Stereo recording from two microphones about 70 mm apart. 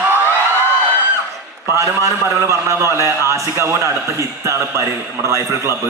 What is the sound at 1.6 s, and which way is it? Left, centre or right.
A man's voice, right.